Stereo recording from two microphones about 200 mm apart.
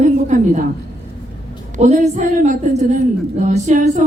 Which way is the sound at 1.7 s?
35° right (ahead or behind).